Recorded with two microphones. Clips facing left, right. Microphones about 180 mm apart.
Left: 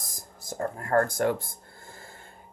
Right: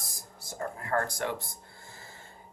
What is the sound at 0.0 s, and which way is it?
Music, 45° left (ahead or behind).